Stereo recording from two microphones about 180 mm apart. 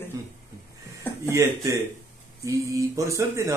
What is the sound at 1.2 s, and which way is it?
Speech, 15° right (ahead or behind).